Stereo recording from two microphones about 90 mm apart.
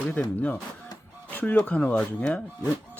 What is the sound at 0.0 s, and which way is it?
Speech, 15° left (ahead or behind).